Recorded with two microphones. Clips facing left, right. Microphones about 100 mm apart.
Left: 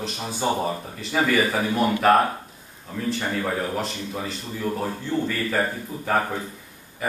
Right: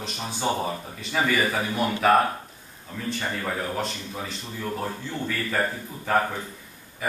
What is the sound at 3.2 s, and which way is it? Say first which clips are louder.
A man's voice: left 2 dB; 5° left (ahead or behind).